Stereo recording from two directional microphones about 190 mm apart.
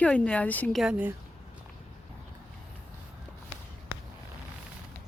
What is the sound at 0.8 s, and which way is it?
Speech, 10° right (ahead or behind).